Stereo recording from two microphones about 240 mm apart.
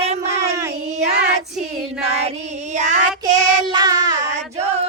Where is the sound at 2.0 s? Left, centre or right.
Right.